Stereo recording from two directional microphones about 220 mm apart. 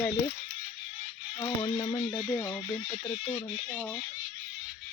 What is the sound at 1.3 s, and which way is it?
Speech, 20° left (ahead or behind).